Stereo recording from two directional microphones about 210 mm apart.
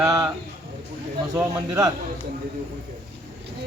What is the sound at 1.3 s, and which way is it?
Speech, 15° right (ahead or behind).